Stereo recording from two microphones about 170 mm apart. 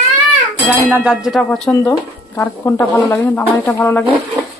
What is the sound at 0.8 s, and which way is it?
Speech, 10° right (ahead or behind).